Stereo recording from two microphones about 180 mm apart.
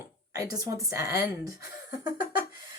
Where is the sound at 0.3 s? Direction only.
20° right (ahead or behind).